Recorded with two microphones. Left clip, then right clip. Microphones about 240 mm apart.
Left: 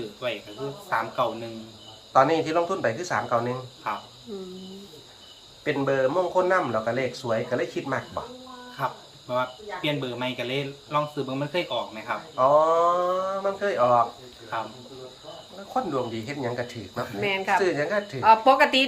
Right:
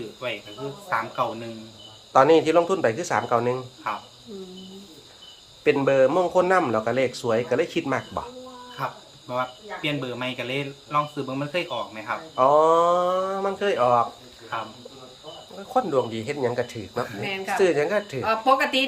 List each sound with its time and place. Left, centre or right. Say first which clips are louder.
0.2 s speech: even; centre
2.1 s speech: right 4 dB; right
5.6 s speech: right 5 dB; right
8.8 s speech: left 1 dB; centre
12.4 s speech: right 2 dB; right
15.7 s speech: right 4 dB; right
17.2 s speech: left 3 dB; centre
17.6 s speech: right 3 dB; right
18.2 s speech: left 5 dB; centre